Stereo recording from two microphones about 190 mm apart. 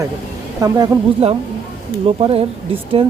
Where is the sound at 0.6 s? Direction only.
20° right (ahead or behind).